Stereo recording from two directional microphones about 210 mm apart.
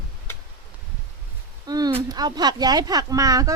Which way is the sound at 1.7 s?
20° right (ahead or behind).